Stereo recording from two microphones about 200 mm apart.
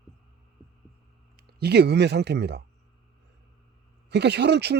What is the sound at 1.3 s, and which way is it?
Speech, 50° right (ahead or behind).